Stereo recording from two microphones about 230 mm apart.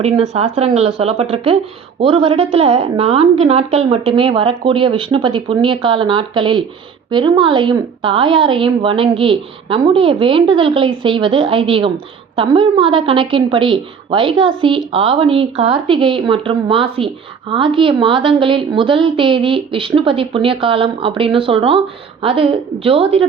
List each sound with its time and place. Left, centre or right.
0.0 s a woman's voice: right